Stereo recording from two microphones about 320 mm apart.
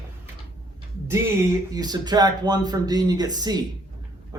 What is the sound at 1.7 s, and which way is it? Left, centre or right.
Speech, centre.